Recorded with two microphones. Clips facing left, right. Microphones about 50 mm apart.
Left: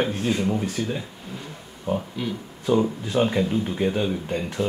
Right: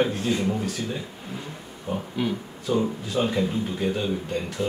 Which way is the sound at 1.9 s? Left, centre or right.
Centre.